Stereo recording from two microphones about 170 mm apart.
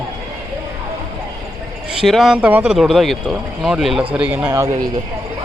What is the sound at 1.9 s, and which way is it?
Speech, centre (ahead or behind).